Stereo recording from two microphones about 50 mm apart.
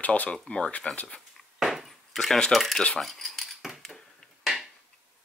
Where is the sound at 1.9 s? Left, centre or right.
Centre.